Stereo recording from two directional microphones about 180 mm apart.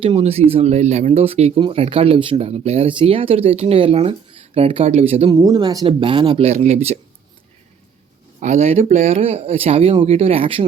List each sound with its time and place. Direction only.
0.0 s speech: 35° right (ahead or behind)
5.3 s speech: 20° right (ahead or behind); by 7.0 s 35° right (ahead or behind)
8.4 s speech: 40° right (ahead or behind)